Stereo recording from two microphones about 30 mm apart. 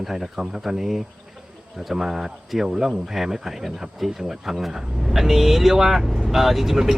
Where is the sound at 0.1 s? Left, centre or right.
Centre.